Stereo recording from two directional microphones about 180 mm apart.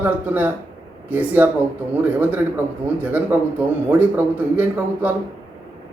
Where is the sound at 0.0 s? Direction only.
10° right (ahead or behind).